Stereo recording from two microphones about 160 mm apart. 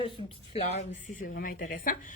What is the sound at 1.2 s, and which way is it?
Speech, 65° left (ahead or behind).